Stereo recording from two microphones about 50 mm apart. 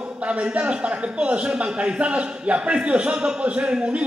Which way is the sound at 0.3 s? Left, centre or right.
Right.